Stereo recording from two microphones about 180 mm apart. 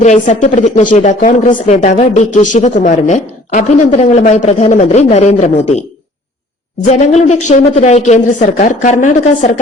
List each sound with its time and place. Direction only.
0.0 s speech: 40° left (ahead or behind)
7.1 s speech: 40° left (ahead or behind)